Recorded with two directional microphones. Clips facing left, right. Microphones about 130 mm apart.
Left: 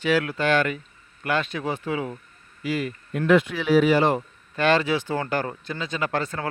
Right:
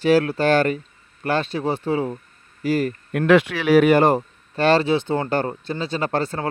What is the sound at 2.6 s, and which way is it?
Speech, 40° right (ahead or behind).